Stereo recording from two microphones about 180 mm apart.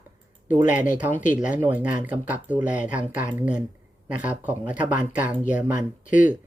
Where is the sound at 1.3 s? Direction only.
10° right (ahead or behind).